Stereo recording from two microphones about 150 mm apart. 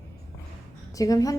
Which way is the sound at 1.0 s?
25° left (ahead or behind).